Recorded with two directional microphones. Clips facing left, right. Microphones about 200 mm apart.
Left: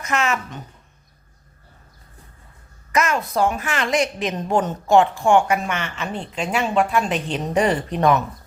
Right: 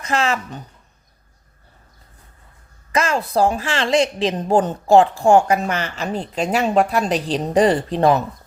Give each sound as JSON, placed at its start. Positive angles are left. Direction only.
{"t": 0.0, "sound": "a woman's voice", "side_deg": -30}
{"t": 2.9, "sound": "a woman's voice", "side_deg": -30}